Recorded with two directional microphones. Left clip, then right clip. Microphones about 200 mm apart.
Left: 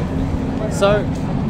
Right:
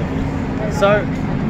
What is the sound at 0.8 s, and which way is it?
Speech, 15° left (ahead or behind).